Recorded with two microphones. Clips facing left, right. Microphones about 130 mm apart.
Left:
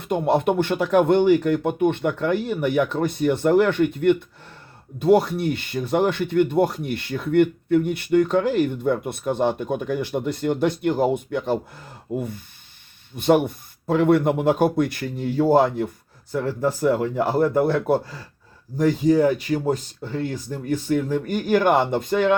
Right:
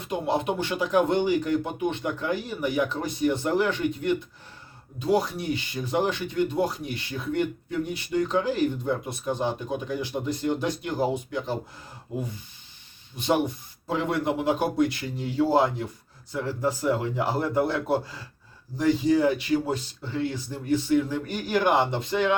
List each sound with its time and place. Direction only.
0.0 s speech: 55° left (ahead or behind)